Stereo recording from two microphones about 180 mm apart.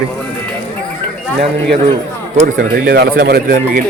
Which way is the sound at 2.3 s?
50° right (ahead or behind).